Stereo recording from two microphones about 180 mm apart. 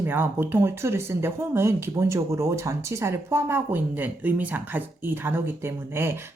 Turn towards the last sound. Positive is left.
turn(degrees=-15)  # may be behind; listen again after turning